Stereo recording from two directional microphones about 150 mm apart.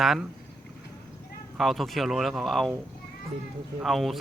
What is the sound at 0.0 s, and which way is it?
Speech, centre (ahead or behind).